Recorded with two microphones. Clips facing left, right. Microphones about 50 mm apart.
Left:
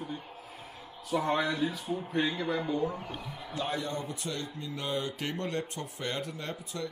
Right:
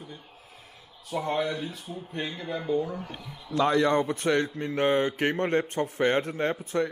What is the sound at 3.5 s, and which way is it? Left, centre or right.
Speech, right.